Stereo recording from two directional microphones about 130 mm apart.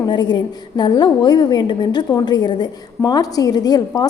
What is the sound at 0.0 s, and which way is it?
A woman's voice, 35° left (ahead or behind).